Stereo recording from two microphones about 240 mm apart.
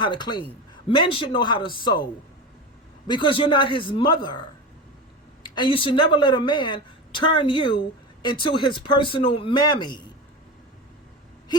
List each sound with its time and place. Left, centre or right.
0.0 s speech: centre
3.1 s speech: left